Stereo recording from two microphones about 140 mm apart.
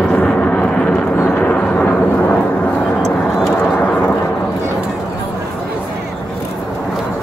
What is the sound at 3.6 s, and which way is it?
Vehicle, 10° left (ahead or behind).